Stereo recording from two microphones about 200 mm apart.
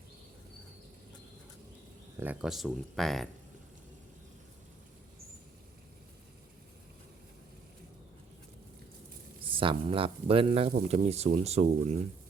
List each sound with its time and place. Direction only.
2.1 s speech: 10° right (ahead or behind)
9.4 s speech: 25° right (ahead or behind)